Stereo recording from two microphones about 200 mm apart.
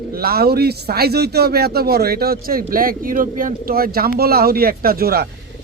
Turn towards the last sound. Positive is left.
turn(degrees=-50)  # may be behind; listen again after turning